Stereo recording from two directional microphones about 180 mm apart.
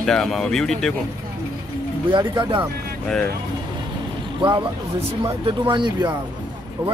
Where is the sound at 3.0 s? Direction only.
5° left (ahead or behind).